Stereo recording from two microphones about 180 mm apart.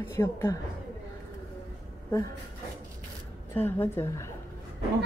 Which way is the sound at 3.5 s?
10° left (ahead or behind).